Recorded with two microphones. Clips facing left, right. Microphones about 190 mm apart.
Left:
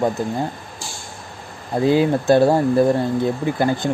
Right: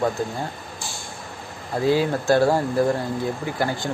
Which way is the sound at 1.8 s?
20° left (ahead or behind).